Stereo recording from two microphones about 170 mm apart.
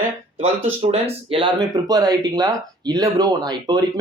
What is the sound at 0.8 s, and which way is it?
Speech, 35° right (ahead or behind).